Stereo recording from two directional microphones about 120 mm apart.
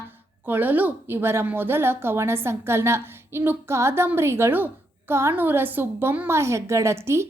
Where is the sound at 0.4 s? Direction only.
15° right (ahead or behind).